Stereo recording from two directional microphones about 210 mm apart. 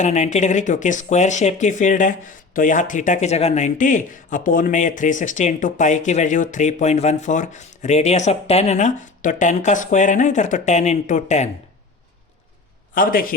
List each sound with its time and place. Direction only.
0.0 s speech: 35° left (ahead or behind)
12.9 s a man's voice: 40° left (ahead or behind)